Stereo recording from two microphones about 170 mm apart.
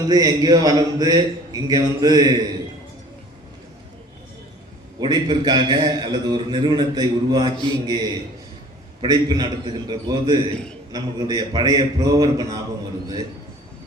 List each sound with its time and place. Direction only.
0.0 s a man's voice: 20° right (ahead or behind)
4.9 s a man's voice: 25° right (ahead or behind)